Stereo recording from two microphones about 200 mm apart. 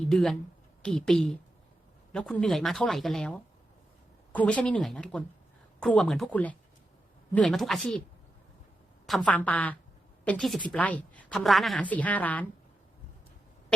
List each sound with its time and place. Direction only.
0.1 s a woman's voice: centre (ahead or behind)
9.0 s a woman's voice: 5° left (ahead or behind)